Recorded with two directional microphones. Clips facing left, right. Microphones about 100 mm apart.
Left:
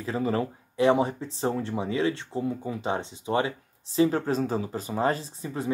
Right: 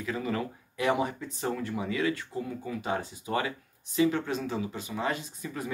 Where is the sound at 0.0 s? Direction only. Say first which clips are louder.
Left 4 dB; 30° left (ahead or behind).